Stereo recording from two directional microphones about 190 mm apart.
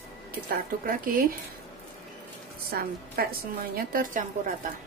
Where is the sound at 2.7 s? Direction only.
50° right (ahead or behind).